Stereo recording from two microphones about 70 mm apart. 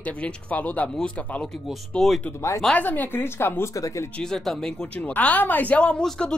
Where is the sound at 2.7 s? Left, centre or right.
Left.